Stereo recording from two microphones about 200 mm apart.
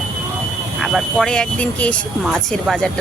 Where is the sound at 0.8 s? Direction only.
Centre (ahead or behind).